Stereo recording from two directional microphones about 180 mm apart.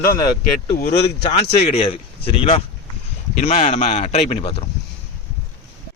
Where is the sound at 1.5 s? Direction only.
35° left (ahead or behind).